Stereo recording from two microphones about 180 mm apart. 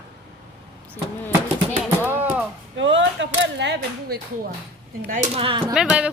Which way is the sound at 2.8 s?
85° right.